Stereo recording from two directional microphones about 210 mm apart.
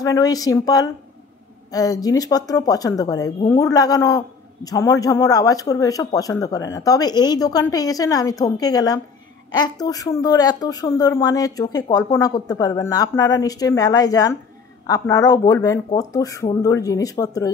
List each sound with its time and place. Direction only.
0.0 s speech: 15° left (ahead or behind)